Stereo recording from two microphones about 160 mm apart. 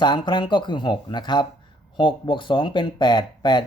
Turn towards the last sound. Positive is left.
turn(degrees=30)  # may be behind; listen again after turning